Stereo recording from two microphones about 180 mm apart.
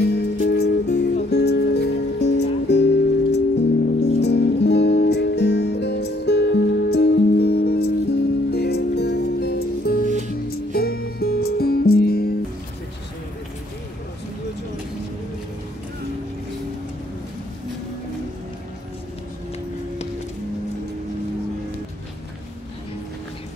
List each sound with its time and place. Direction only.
0.1 s music: 65° left (ahead or behind)
10.0 s music: 40° right (ahead or behind)
10.7 s music: 60° left (ahead or behind)